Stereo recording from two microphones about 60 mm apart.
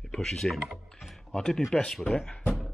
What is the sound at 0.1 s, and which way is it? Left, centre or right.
Speech, centre.